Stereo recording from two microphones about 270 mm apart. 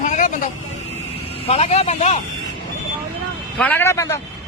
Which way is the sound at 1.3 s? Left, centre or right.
Left.